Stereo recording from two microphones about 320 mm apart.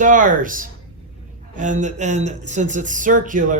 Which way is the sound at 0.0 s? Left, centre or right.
Right.